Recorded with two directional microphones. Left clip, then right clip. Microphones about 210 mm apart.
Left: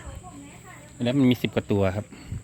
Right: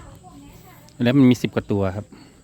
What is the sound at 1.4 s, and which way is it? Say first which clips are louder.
Speech: right 1 dB; 20° right (ahead or behind).